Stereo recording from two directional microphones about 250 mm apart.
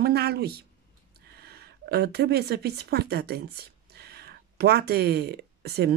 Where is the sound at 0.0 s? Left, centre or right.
Right.